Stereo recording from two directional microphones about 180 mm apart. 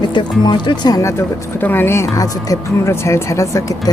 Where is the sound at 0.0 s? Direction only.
25° left (ahead or behind).